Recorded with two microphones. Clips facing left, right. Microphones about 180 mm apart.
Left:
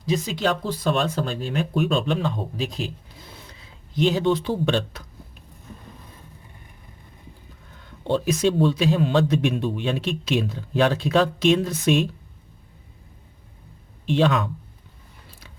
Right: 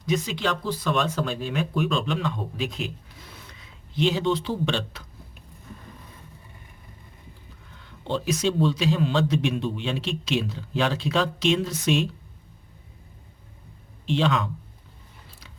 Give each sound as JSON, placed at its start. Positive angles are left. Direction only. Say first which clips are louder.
{"t": 0.0, "sound": "speech", "louder": "left 2 dB", "side_deg": 35}
{"t": 3.9, "sound": "a man's voice", "louder": "left 3 dB", "side_deg": 45}
{"t": 8.0, "sound": "a man's voice", "louder": "left 4 dB", "side_deg": 55}
{"t": 14.1, "sound": "a man's voice", "louder": "left 3 dB", "side_deg": 50}